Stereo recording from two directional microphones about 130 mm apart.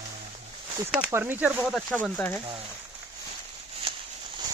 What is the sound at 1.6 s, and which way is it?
Speech, 5° left (ahead or behind).